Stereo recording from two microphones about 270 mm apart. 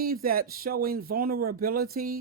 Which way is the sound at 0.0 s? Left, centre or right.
Right.